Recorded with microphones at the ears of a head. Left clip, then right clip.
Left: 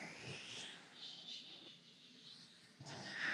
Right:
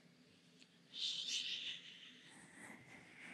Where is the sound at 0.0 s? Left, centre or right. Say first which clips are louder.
Left 18 dB; left.